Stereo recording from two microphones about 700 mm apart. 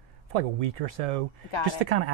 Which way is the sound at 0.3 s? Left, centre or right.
Right.